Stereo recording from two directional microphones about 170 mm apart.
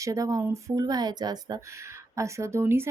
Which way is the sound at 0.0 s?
20° right (ahead or behind).